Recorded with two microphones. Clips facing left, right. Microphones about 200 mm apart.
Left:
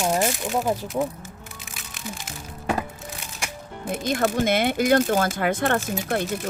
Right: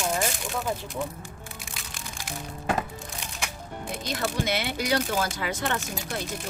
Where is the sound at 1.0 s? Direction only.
50° left (ahead or behind).